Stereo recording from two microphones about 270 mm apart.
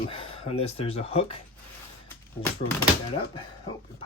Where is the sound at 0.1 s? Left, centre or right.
Left.